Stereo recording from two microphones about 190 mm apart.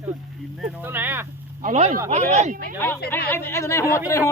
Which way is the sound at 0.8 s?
10° right (ahead or behind).